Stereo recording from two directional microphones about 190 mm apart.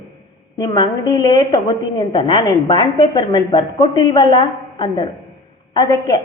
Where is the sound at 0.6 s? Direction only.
20° left (ahead or behind).